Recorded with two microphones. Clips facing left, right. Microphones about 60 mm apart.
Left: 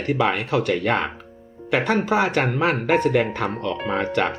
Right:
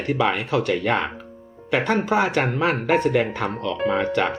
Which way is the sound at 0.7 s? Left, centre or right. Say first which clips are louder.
Even; centre.